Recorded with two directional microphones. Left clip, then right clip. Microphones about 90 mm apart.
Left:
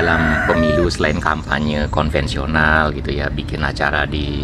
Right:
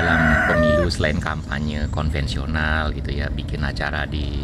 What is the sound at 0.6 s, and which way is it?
Speech, 15° right (ahead or behind).